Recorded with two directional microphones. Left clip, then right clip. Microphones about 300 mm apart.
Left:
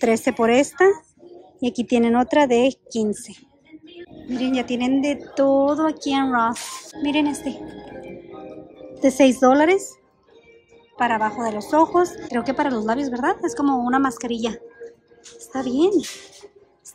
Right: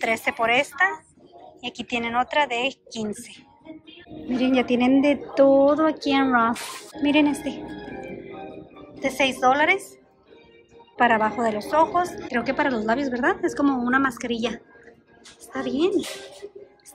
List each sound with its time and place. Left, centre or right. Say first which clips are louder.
0.0 s speech: left 4 dB; centre
4.4 s a woman's voice: right 2 dB; centre
9.0 s speech: left 5 dB; left
11.0 s a woman's voice: right 1 dB; centre